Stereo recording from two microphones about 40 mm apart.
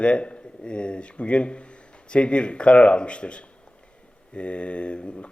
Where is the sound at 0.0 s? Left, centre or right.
Left.